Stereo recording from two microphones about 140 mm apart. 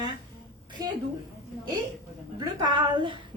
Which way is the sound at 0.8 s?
25° right (ahead or behind).